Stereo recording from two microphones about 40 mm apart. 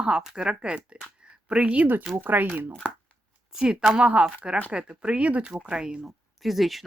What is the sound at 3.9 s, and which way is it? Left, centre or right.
Speech, right.